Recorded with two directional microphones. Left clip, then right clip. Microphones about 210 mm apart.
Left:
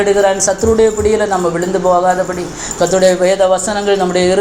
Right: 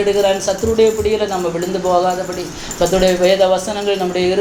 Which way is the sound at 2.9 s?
25° left (ahead or behind).